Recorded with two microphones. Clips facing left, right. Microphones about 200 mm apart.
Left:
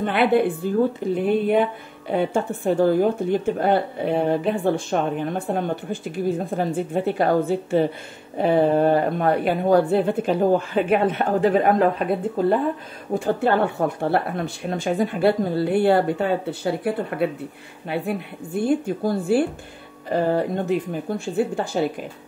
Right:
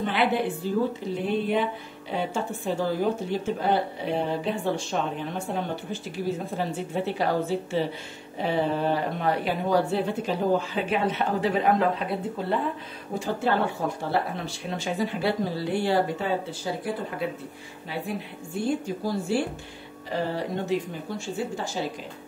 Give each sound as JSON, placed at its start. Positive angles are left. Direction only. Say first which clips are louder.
{"t": 0.0, "sound": "speech", "louder": "left 6 dB", "side_deg": 55}